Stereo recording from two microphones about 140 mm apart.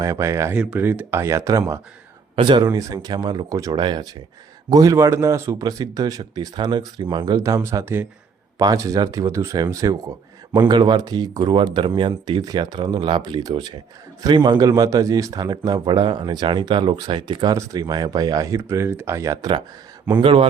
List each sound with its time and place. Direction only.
0.0 s a man's voice: 20° right (ahead or behind)
2.3 s a man's voice: 35° right (ahead or behind)